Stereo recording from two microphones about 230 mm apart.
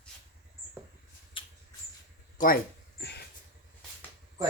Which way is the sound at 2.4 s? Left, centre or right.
Left.